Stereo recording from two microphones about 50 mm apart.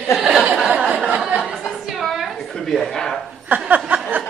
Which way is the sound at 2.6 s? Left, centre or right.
Centre.